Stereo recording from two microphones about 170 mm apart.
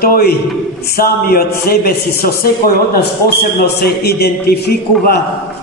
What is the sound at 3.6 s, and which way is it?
A man's voice, 70° left (ahead or behind).